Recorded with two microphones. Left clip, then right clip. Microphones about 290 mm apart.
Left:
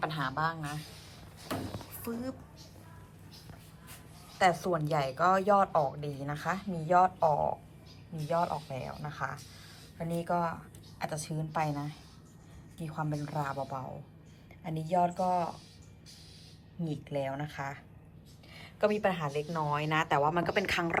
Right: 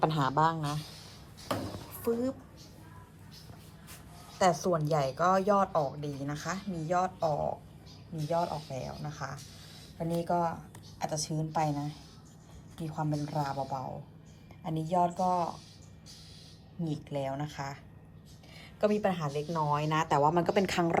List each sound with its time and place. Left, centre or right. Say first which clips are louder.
0.0 s speech: right 5 dB; centre
4.4 s a woman's voice: even; centre
16.8 s a woman's voice: even; centre